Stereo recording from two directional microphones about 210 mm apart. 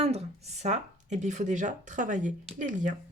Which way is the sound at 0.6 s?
35° right (ahead or behind).